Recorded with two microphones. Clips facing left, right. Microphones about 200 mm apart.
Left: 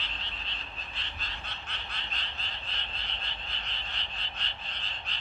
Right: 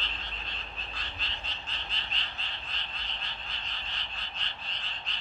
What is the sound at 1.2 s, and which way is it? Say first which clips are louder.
Frog: even; 60° left (ahead or behind).